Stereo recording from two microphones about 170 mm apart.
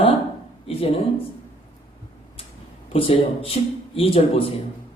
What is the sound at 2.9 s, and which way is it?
A man's voice, 35° left (ahead or behind).